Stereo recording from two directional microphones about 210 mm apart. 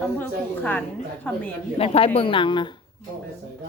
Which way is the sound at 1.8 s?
25° left (ahead or behind).